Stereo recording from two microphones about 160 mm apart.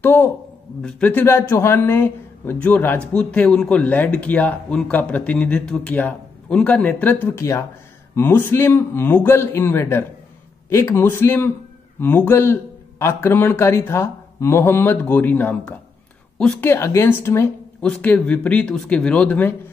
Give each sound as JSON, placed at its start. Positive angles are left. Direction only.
{"t": 0.0, "sound": "speech", "side_deg": 10}